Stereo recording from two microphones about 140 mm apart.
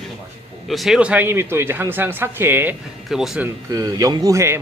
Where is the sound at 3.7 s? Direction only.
25° right (ahead or behind).